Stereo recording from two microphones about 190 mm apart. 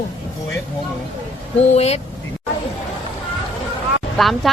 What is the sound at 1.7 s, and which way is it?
Speech, 35° left (ahead or behind).